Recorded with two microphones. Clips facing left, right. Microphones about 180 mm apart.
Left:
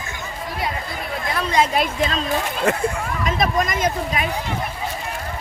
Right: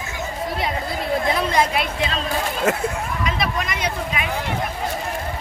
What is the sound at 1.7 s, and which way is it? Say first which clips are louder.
Speech: left 2 dB; 45° left (ahead or behind).